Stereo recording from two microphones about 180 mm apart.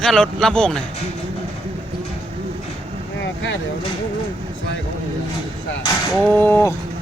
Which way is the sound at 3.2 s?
90° left.